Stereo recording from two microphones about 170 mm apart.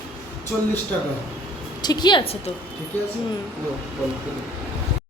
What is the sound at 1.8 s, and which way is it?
Speech, 25° left (ahead or behind).